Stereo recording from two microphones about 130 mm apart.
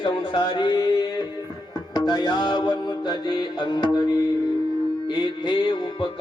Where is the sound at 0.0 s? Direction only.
35° left (ahead or behind).